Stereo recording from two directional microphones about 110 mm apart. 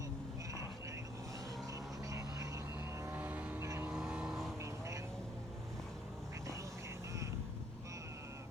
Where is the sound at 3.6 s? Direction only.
25° right (ahead or behind).